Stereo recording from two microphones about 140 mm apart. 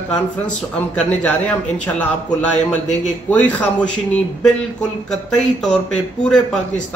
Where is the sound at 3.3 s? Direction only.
10° left (ahead or behind).